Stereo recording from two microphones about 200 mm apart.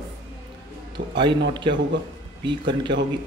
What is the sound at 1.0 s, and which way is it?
Speech, 40° right (ahead or behind).